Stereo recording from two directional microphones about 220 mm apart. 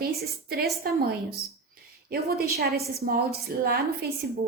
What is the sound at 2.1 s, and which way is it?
A woman's voice, 45° right (ahead or behind).